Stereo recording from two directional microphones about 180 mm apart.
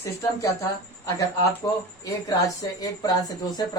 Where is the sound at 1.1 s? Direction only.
20° left (ahead or behind).